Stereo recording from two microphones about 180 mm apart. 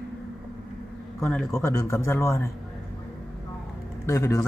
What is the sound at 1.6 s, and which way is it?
Speech, 15° left (ahead or behind).